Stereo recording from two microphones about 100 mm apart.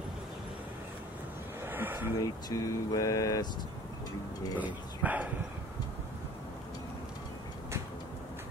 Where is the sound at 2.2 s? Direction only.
35° left (ahead or behind).